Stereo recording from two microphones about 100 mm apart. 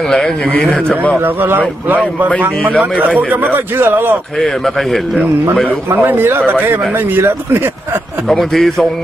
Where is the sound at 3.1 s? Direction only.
15° right (ahead or behind).